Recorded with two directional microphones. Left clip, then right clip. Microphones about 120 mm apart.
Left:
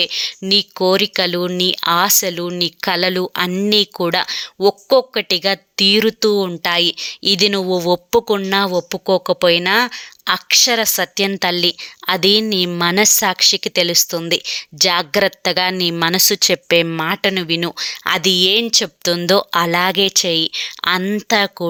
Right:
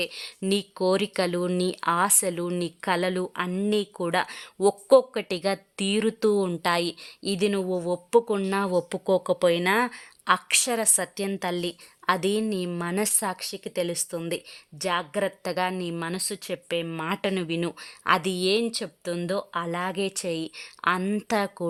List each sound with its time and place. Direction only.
0.0 s a woman's voice: 15° left (ahead or behind)
4.3 s speech: 10° left (ahead or behind)
5.8 s a woman's voice: 20° left (ahead or behind)
6.1 s speech: 10° left (ahead or behind); by 8.0 s 35° left (ahead or behind)
8.1 s a woman's voice: 20° left (ahead or behind)
15.4 s a woman's voice: 20° left (ahead or behind)
16.0 s speech: 40° left (ahead or behind)
17.2 s a woman's voice: 25° left (ahead or behind)
20.0 s speech: 15° left (ahead or behind)